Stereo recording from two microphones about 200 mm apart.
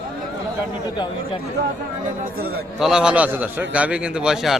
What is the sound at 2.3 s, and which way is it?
Speech, 50° right (ahead or behind).